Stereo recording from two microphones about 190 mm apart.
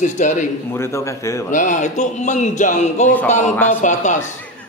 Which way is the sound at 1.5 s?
40° left (ahead or behind).